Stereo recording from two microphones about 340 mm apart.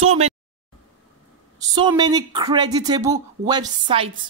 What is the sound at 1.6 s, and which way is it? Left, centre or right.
Speech, centre.